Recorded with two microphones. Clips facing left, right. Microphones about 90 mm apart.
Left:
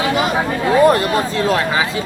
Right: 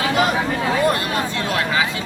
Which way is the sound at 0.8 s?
35° left (ahead or behind).